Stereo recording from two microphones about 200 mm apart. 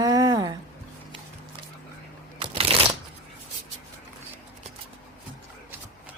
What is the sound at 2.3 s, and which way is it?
Shuffling cards, 30° right (ahead or behind).